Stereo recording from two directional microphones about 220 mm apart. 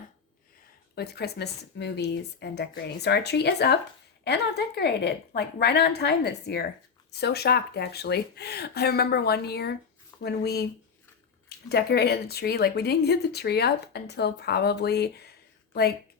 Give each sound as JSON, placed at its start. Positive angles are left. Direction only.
{"t": 0.9, "sound": "speech", "side_deg": 45}